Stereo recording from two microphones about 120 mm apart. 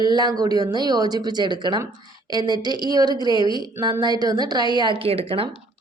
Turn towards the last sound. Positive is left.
turn(degrees=-55)  # may be behind; listen again after turning